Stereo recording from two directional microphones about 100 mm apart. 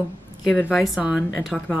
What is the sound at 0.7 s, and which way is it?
Speech, centre (ahead or behind).